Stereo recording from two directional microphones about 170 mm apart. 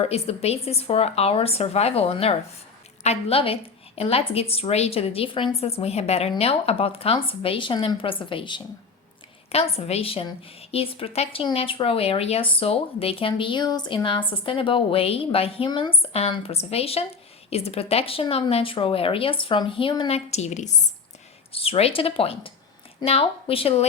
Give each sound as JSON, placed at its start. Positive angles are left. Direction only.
{"t": 0.0, "sound": "a woman's voice", "side_deg": 35}